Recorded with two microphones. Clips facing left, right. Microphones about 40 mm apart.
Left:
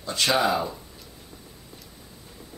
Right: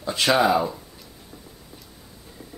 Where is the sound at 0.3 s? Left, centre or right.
Centre.